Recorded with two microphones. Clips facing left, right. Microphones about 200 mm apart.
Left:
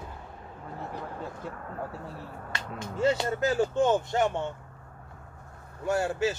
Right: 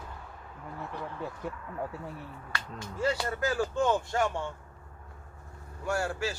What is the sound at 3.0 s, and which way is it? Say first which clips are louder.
Speech: left 4 dB; 25° left (ahead or behind).